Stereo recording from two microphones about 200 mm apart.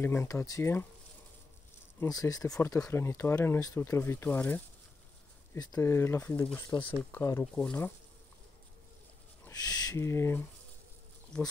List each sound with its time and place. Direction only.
0.0 s speech: 10° left (ahead or behind)
2.0 s speech: 15° left (ahead or behind)
9.4 s speech: 15° left (ahead or behind)